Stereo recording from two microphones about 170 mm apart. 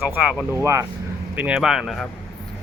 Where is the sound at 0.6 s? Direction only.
15° right (ahead or behind).